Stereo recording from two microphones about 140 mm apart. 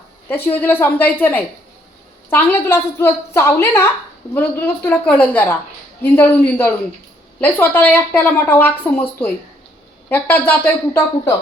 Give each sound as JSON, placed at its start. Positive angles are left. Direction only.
{"t": 0.3, "sound": "a woman's voice", "side_deg": 15}